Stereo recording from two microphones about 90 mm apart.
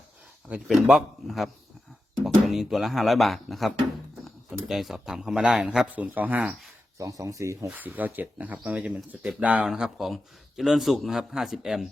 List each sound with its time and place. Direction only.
0.7 s a man's voice: 5° right (ahead or behind)
4.7 s speech: centre (ahead or behind); by 6.5 s 20° right (ahead or behind)
7.0 s speech: 40° right (ahead or behind)
7.7 s a man's voice: 20° right (ahead or behind)